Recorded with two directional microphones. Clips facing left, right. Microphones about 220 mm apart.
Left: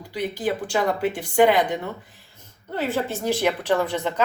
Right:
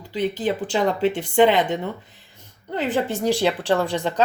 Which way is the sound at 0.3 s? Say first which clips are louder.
Left 2 dB; 25° right (ahead or behind).